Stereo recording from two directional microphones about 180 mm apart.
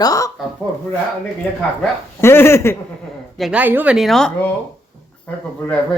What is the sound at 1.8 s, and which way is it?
Speech, 15° left (ahead or behind).